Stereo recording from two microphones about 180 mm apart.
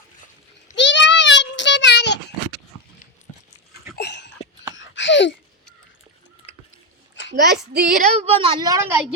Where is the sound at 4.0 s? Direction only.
70° left (ahead or behind).